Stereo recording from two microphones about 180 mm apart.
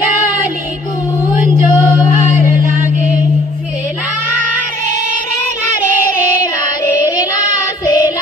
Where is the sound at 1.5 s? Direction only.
20° left (ahead or behind).